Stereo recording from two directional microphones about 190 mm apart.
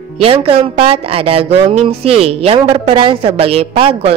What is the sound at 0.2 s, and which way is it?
A woman's voice, 30° right (ahead or behind).